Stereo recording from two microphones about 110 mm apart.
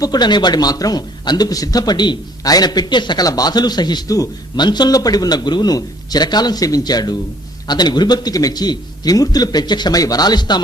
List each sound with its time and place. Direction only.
0.0 s a man's voice: 40° left (ahead or behind)